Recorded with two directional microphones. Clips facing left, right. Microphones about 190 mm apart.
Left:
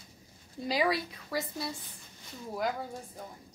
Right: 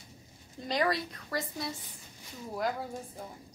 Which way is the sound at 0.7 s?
5° left (ahead or behind).